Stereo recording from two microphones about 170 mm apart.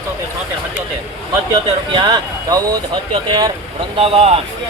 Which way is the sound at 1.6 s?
25° right (ahead or behind).